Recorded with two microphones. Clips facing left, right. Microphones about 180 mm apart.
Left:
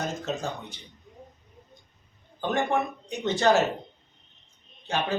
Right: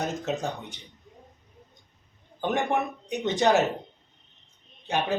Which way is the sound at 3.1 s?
15° right (ahead or behind).